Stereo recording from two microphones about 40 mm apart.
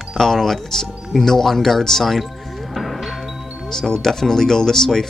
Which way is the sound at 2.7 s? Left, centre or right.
Centre.